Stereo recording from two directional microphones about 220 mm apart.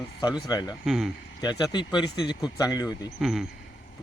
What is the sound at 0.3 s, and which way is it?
Speech, 15° left (ahead or behind).